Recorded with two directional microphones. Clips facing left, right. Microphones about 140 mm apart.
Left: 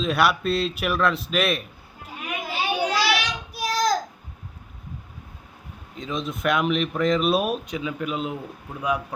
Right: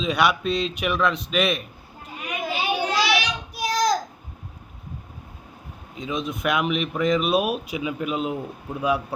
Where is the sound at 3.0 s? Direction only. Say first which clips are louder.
Right 1 dB; 5° left (ahead or behind).